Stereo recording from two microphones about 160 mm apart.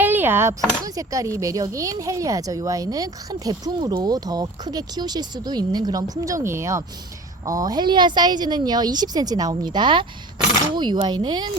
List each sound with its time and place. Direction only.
0.0 s a child's voice: 10° right (ahead or behind); by 11.5 s 25° right (ahead or behind)